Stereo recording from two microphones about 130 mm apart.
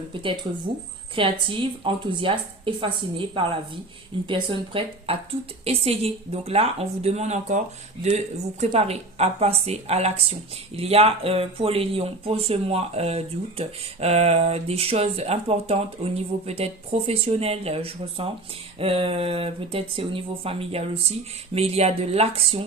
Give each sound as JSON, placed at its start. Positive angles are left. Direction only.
{"t": 0.1, "sound": "a woman's voice", "side_deg": -40}
{"t": 8.6, "sound": "speech", "side_deg": -50}